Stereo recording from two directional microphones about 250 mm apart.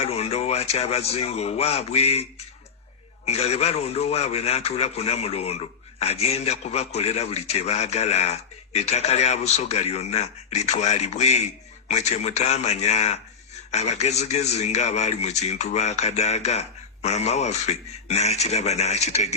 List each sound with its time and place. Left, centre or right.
0.0 s a man's voice: left
3.2 s a man's voice: left